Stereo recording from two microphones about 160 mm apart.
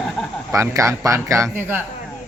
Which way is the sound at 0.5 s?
20° right (ahead or behind).